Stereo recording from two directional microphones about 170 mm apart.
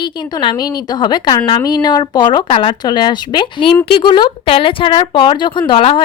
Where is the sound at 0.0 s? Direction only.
25° left (ahead or behind).